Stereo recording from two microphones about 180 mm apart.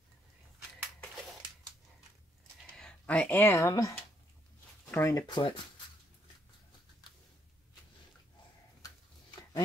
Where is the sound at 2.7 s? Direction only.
5° left (ahead or behind).